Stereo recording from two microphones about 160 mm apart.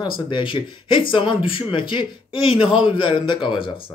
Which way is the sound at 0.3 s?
30° left (ahead or behind).